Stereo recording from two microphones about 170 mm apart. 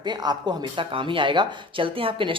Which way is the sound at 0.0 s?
25° right (ahead or behind).